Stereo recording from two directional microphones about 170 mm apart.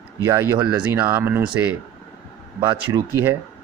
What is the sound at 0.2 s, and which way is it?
Speech, 20° right (ahead or behind).